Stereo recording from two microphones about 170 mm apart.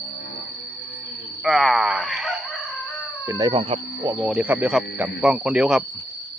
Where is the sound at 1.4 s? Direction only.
Centre (ahead or behind).